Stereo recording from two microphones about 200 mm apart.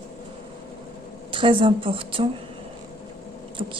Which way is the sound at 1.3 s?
25° right (ahead or behind).